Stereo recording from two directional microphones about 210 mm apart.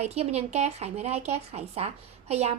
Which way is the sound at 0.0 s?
30° right (ahead or behind).